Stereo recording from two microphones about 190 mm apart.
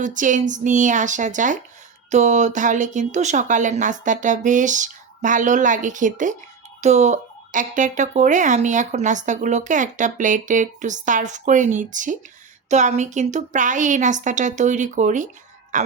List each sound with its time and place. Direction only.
0.0 s speech: 40° right (ahead or behind)